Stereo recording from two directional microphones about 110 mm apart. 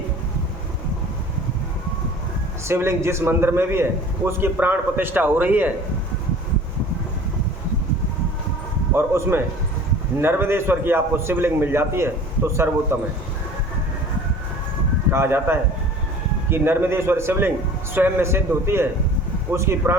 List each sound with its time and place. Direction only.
2.6 s a man's voice: 25° right (ahead or behind)
9.0 s a man's voice: 25° right (ahead or behind)
15.1 s a man's voice: 20° right (ahead or behind)